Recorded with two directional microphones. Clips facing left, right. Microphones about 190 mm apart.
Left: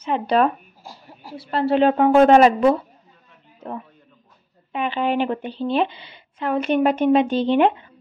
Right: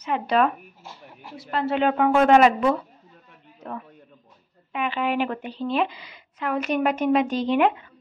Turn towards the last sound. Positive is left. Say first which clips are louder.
# left 3 dB
turn(degrees=30)  # may be behind; listen again after turning